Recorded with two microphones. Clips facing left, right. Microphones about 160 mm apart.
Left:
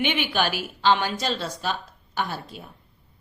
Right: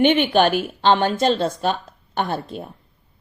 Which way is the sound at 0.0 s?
50° right (ahead or behind).